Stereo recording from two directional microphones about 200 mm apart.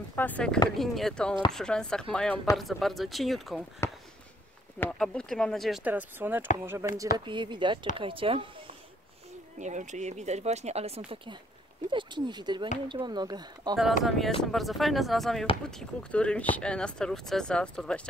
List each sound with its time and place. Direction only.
0.1 s speech: 10° left (ahead or behind)
4.7 s speech: 5° left (ahead or behind)
7.2 s speech: 25° right (ahead or behind)
9.6 s speech: 35° right (ahead or behind); by 13.7 s 20° right (ahead or behind)
14.0 s speech: centre (ahead or behind)